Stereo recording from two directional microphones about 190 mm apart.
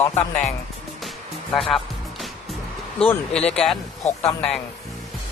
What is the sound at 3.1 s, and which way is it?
Speech, 5° left (ahead or behind).